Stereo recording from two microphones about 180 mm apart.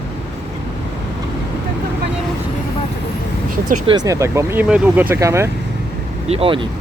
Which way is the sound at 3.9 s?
20° right (ahead or behind).